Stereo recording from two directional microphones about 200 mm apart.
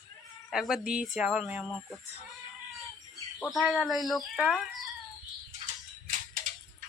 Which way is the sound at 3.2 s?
10° left (ahead or behind).